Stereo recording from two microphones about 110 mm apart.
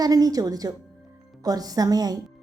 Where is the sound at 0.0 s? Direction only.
35° right (ahead or behind).